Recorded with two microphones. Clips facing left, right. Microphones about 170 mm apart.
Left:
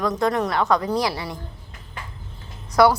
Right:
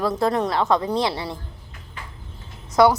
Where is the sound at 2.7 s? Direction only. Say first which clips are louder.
Even; 20° right (ahead or behind).